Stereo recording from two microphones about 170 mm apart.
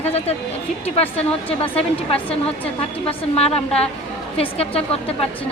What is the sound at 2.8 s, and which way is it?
A woman's voice, 35° left (ahead or behind).